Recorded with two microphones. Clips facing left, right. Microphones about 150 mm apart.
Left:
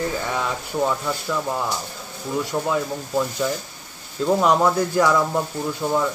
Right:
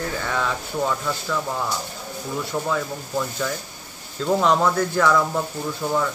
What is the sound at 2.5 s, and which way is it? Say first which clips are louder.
Speech: left 1 dB; 15° left (ahead or behind).